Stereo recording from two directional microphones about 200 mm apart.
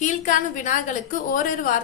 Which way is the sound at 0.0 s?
40° left (ahead or behind).